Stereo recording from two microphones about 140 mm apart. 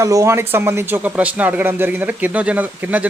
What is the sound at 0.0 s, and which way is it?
Speech, 25° right (ahead or behind).